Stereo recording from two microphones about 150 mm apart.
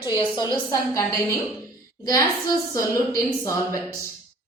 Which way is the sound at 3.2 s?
20° left (ahead or behind).